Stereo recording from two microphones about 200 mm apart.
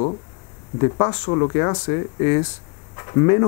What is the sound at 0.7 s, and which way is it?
Speech, 20° left (ahead or behind).